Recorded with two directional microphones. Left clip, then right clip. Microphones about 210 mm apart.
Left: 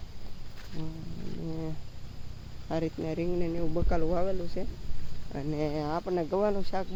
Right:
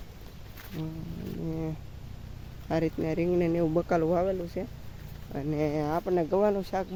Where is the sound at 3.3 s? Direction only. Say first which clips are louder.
Right 6 dB; 45° right (ahead or behind).